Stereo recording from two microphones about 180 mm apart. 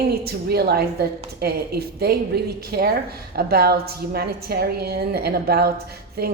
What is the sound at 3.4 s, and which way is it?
Speech, 60° right (ahead or behind).